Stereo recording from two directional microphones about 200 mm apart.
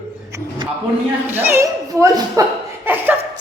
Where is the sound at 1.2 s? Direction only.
10° right (ahead or behind).